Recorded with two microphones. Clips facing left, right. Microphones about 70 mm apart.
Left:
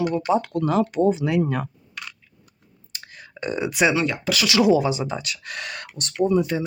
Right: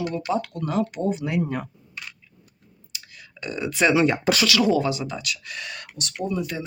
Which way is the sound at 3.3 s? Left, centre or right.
Left.